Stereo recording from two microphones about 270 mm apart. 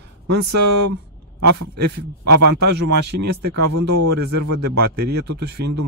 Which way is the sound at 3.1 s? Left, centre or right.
Right.